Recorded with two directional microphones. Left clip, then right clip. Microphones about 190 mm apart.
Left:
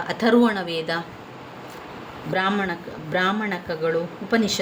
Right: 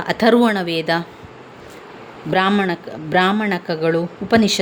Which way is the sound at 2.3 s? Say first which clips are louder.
Right 6 dB; 45° right (ahead or behind).